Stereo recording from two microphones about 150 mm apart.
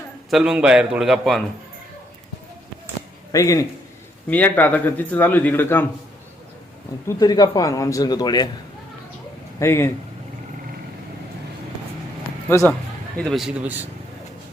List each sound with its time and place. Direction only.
0.3 s a man's voice: 5° right (ahead or behind)
3.3 s a man's voice: 20° left (ahead or behind)
4.3 s speech: 10° left (ahead or behind)
7.2 s a man's voice: 25° left (ahead or behind)
9.6 s a man's voice: 20° left (ahead or behind)
12.5 s speech: 15° left (ahead or behind)
13.1 s a man's voice: 5° left (ahead or behind)